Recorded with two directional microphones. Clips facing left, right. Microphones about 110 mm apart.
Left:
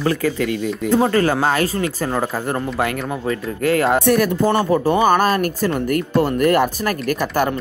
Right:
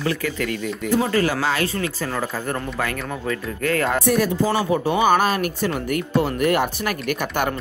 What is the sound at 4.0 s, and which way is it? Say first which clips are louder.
Speech: left 3 dB; 60° left (ahead or behind).